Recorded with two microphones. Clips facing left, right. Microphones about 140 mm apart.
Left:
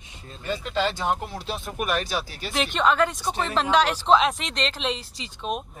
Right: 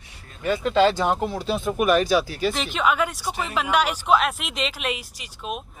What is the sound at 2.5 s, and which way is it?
Speech, centre (ahead or behind).